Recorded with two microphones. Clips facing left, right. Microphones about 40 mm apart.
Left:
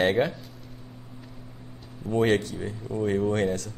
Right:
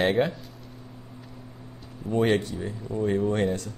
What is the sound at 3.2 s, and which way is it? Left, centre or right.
Speech, centre.